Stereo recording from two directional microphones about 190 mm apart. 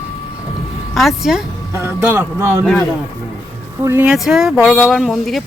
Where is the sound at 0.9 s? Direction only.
Centre (ahead or behind).